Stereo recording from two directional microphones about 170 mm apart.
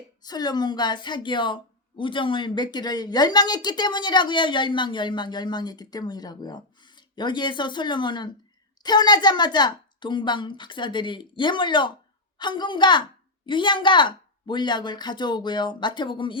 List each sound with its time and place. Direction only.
0.2 s speech: 25° left (ahead or behind)